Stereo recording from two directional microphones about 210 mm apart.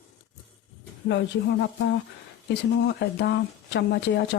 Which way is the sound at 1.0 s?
55° left (ahead or behind).